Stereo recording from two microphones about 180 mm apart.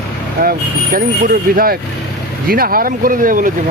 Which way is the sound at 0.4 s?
55° right (ahead or behind).